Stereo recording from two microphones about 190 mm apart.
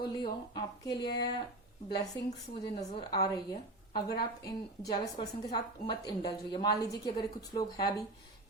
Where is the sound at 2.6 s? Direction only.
25° left (ahead or behind).